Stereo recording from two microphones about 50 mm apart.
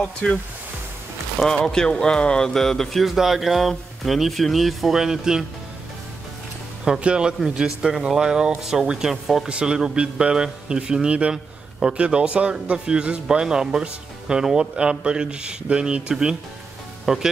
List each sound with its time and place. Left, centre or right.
0.0 s speech: left
1.4 s speech: centre
3.2 s speech: centre
6.8 s a man's voice: centre